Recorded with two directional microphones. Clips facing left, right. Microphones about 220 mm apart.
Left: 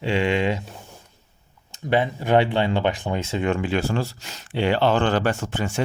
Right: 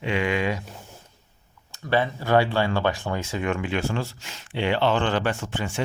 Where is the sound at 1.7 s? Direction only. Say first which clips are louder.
Left 2 dB; 20° left (ahead or behind).